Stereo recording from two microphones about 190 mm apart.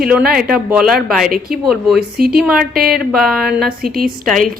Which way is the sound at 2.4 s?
5° right (ahead or behind).